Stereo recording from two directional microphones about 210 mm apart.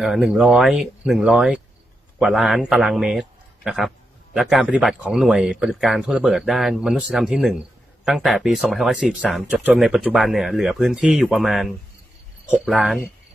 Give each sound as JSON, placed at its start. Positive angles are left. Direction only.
{"t": 0.0, "sound": "a man's voice", "side_deg": 0}